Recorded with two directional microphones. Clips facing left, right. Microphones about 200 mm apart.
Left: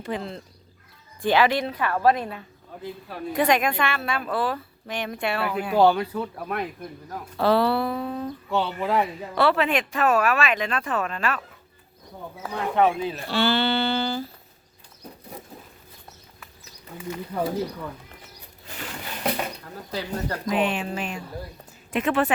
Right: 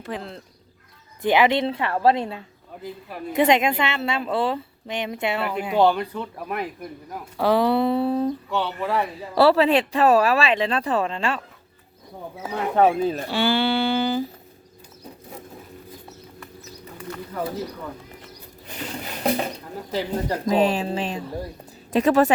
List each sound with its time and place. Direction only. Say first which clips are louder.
0.0 s speech: left 2 dB; centre (ahead or behind)
1.2 s speech: right 2 dB; 20° right (ahead or behind)
5.7 s speech: even; centre (ahead or behind); by 8.3 s 30° right (ahead or behind)
8.4 s speech: even; 15° left (ahead or behind)
9.1 s speech: right 5 dB; 35° right (ahead or behind)
12.7 s speech: right 3 dB; 40° right (ahead or behind)
13.2 s speech: left 2 dB; 15° right (ahead or behind)
17.0 s speech: left 2 dB; 10° left (ahead or behind)
18.9 s patter: right 4 dB; 30° right (ahead or behind)
20.0 s speech: right 4 dB; 25° right (ahead or behind)
20.5 s speech: right 4 dB; 35° right (ahead or behind)